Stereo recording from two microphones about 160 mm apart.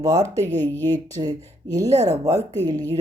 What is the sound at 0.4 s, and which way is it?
Speech, 10° left (ahead or behind).